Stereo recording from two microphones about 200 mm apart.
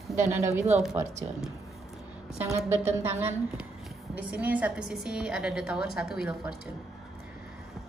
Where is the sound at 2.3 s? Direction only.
15° right (ahead or behind).